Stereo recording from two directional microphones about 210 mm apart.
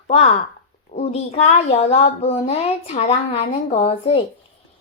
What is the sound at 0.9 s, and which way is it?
A child's voice, 30° left (ahead or behind).